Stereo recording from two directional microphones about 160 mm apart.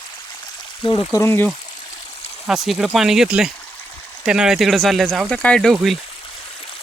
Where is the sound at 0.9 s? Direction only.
30° left (ahead or behind).